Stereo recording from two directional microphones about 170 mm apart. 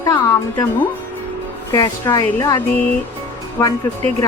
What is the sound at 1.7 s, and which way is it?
Speech, 20° left (ahead or behind).